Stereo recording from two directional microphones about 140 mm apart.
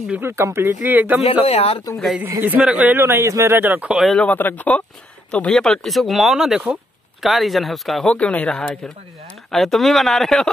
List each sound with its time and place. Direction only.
0.1 s speech: 20° right (ahead or behind)
1.2 s speech: 45° left (ahead or behind)
2.4 s speech: 10° right (ahead or behind)
3.9 s speech: centre (ahead or behind)